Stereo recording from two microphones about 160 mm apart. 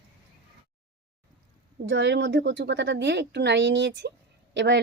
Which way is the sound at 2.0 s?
90° right.